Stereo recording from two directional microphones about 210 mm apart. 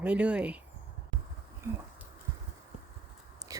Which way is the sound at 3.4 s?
15° right (ahead or behind).